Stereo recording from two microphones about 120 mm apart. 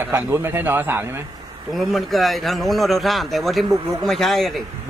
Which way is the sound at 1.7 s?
Centre (ahead or behind).